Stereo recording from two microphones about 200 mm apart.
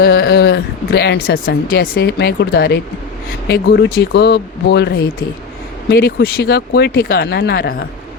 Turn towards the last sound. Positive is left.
turn(degrees=50)  # may be behind; listen again after turning